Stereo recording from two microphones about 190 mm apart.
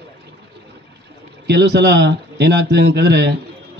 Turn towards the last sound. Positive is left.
turn(degrees=-65)  # may be behind; listen again after turning